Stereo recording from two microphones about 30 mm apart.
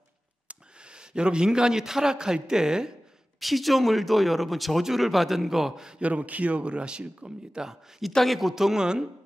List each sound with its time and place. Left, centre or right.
0.9 s a man's voice: right
3.3 s speech: centre
5.9 s speech: right
7.2 s a man's voice: right
8.0 s speech: centre